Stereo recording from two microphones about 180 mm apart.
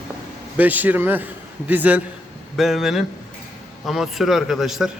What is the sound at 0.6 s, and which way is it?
A man's voice, 10° right (ahead or behind).